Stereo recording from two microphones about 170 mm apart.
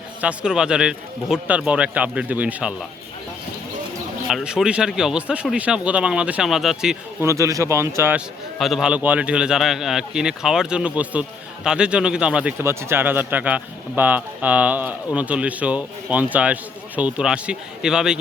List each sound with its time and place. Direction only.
0.2 s a man's voice: 5° right (ahead or behind)
4.3 s speech: 5° right (ahead or behind)
7.2 s a man's voice: 20° right (ahead or behind)
8.5 s a man's voice: centre (ahead or behind)